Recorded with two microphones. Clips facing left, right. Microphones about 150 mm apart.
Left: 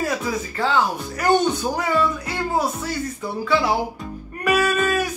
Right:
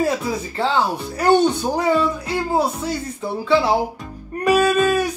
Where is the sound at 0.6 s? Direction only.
30° right (ahead or behind).